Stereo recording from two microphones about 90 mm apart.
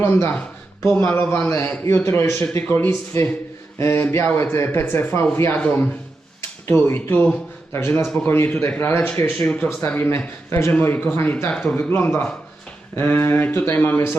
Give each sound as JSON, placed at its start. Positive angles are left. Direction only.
{"t": 0.0, "sound": "speech", "side_deg": 25}
{"t": 9.6, "sound": "speech", "side_deg": 25}